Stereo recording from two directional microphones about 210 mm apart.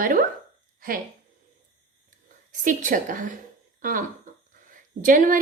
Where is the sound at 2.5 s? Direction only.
40° right (ahead or behind).